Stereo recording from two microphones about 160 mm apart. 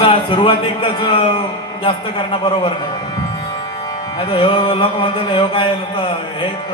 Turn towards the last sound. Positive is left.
turn(degrees=30)  # may be behind; listen again after turning